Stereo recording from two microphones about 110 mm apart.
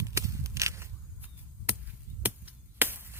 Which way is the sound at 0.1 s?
25° right (ahead or behind).